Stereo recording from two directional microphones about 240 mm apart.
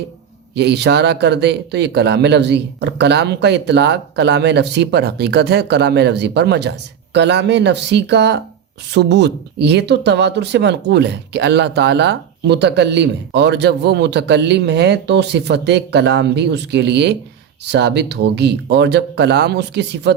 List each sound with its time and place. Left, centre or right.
0.5 s speech: right